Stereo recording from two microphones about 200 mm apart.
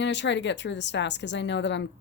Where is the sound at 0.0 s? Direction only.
60° left (ahead or behind).